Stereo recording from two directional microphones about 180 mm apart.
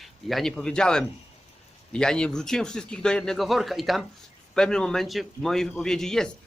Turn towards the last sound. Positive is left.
turn(degrees=5)  # may be behind; listen again after turning